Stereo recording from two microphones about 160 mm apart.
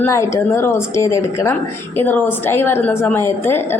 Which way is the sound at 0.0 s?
20° left (ahead or behind).